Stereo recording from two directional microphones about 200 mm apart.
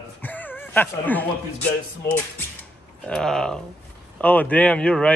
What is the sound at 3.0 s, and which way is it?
A man's voice, 5° left (ahead or behind).